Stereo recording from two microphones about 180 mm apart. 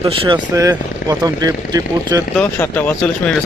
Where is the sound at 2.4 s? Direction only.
10° left (ahead or behind).